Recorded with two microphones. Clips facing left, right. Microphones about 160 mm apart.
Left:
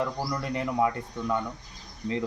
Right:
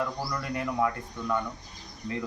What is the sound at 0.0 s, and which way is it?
Speech, 20° left (ahead or behind).